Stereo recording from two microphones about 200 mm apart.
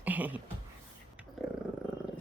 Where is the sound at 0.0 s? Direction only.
10° right (ahead or behind).